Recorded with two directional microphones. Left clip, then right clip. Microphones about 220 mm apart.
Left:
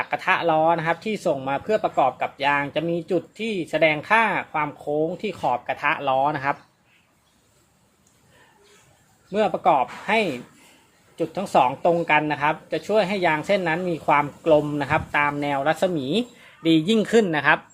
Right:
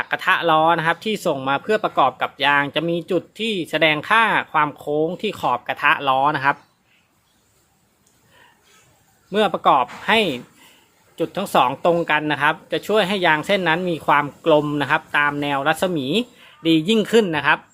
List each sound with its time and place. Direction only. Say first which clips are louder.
0.0 s speech: right 3 dB; 20° right (ahead or behind)
9.3 s speech: right 3 dB; 20° right (ahead or behind); by 17.6 s 5° right (ahead or behind)